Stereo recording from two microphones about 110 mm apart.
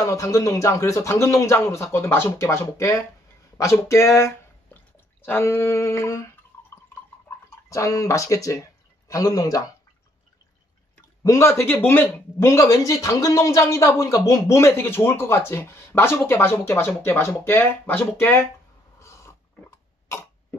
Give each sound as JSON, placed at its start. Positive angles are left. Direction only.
{"t": 0.0, "sound": "speech", "side_deg": 30}
{"t": 7.7, "sound": "speech", "side_deg": 30}
{"t": 11.2, "sound": "speech", "side_deg": 25}
{"t": 12.4, "sound": "speech", "side_deg": 30}
{"t": 18.9, "sound": "mechanisms", "side_deg": 25}